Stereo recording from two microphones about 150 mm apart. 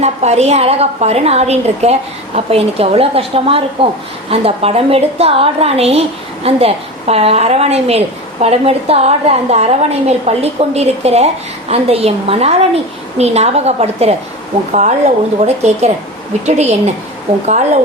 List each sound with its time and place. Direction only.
0.0 s a woman's voice: 45° right (ahead or behind)